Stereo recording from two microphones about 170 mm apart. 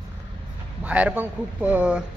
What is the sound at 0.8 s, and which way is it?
Speech, 10° right (ahead or behind).